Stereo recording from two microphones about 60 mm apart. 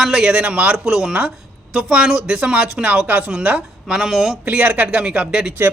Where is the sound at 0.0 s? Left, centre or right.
Centre.